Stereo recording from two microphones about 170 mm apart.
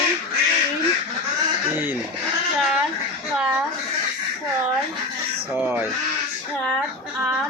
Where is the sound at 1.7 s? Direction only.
10° right (ahead or behind).